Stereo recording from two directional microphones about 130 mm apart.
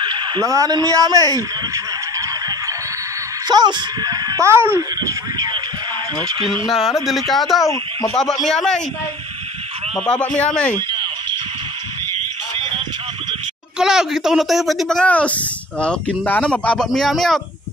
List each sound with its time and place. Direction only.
0.0 s a man's voice: 35° right (ahead or behind)
6.7 s speech: centre (ahead or behind)
7.6 s speech: 25° left (ahead or behind)
8.1 s speech: 5° left (ahead or behind)
9.9 s speech: 10° left (ahead or behind)
13.7 s speech: 5° right (ahead or behind)